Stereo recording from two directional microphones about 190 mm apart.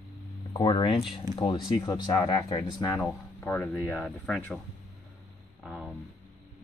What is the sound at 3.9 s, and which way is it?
Speech, centre (ahead or behind).